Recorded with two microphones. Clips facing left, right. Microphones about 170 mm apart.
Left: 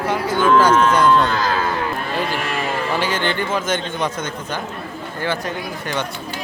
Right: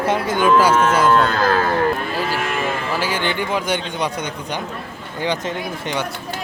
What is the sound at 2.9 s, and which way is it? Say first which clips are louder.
A man's voice: left 2 dB; 10° right (ahead or behind).